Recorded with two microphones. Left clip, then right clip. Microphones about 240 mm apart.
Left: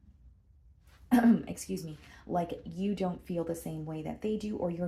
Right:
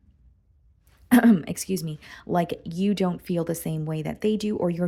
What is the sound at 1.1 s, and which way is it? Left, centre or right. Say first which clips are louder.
Speech: right 7 dB; right.